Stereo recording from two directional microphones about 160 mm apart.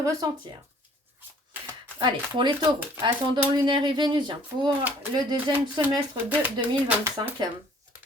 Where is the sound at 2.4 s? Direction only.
30° right (ahead or behind).